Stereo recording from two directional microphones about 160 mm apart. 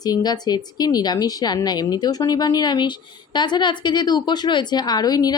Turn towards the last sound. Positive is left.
turn(degrees=25)  # may be behind; listen again after turning